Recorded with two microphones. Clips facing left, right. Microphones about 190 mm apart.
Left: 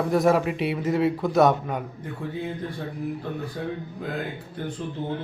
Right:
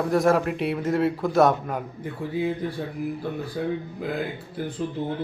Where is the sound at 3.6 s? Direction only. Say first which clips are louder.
Right 5 dB; 5° right (ahead or behind).